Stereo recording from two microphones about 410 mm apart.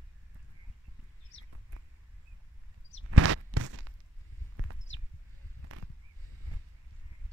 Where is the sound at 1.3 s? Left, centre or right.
Left.